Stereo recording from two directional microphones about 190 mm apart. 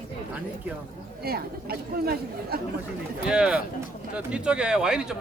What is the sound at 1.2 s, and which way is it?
Speech, 55° right (ahead or behind).